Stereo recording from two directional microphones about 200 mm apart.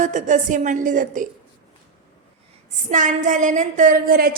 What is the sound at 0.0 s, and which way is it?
A woman's voice, 40° right (ahead or behind).